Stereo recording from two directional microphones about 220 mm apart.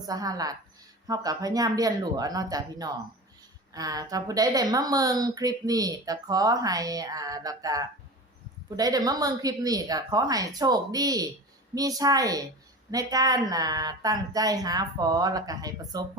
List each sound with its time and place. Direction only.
0.0 s a woman's voice: 15° right (ahead or behind)